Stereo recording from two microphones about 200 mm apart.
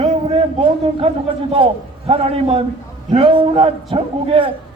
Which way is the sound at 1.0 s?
30° right (ahead or behind).